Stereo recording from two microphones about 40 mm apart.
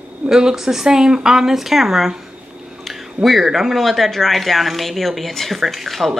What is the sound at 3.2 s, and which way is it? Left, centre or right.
Speech, centre.